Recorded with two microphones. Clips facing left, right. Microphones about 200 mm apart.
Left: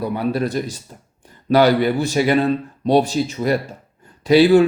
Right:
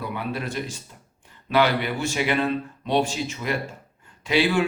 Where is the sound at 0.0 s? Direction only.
40° left (ahead or behind).